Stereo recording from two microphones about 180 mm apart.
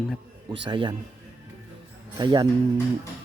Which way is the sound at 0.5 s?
25° right (ahead or behind).